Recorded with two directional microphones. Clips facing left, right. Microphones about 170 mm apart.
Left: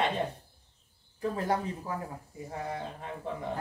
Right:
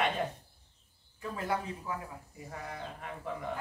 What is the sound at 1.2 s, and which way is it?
Speech, 35° left (ahead or behind).